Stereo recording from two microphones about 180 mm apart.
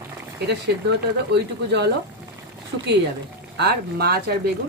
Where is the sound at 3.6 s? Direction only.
60° right (ahead or behind).